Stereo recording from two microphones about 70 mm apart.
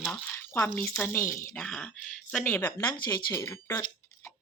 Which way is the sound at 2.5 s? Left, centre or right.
Left.